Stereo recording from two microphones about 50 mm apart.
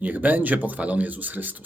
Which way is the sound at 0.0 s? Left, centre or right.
Right.